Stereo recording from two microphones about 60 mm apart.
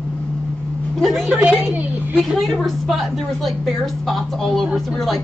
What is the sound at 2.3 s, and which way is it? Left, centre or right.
Speech, centre.